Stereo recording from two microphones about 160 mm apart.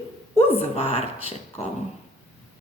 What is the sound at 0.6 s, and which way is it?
Speech, 40° left (ahead or behind).